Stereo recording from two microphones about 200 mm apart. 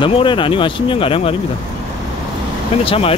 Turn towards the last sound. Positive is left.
turn(degrees=30)  # may be behind; listen again after turning